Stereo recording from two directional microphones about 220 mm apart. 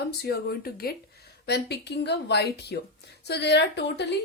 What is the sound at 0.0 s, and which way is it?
Speech, 50° left (ahead or behind).